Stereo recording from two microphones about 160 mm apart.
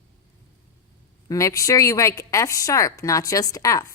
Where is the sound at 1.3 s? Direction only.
20° left (ahead or behind).